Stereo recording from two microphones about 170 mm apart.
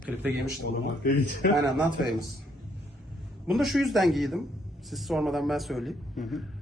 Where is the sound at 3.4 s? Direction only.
Centre (ahead or behind).